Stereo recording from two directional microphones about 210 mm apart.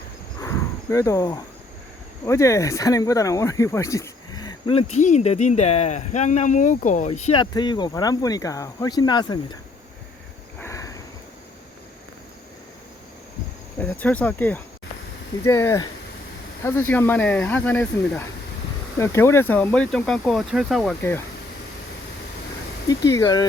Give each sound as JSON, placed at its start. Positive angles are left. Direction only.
{"t": 0.4, "sound": "wild animals", "side_deg": 15}
{"t": 2.2, "sound": "speech", "side_deg": 15}
{"t": 10.6, "sound": "sniff", "side_deg": 15}
{"t": 13.7, "sound": "speech", "side_deg": 10}
{"t": 21.0, "sound": "speech", "side_deg": 10}
{"t": 22.9, "sound": "speech", "side_deg": 15}